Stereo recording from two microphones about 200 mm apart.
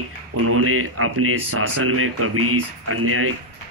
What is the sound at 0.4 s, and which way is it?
Speech, 90° right.